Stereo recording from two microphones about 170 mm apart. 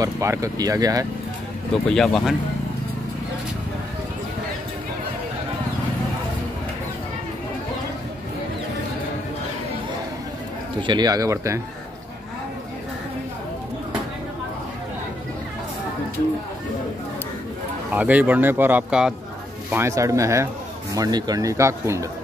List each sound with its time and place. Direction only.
0.0 s speech: 20° right (ahead or behind)
1.9 s speech: 5° left (ahead or behind)
10.8 s speech: 25° right (ahead or behind)
17.9 s speech: 10° right (ahead or behind)
19.7 s speech: 15° right (ahead or behind)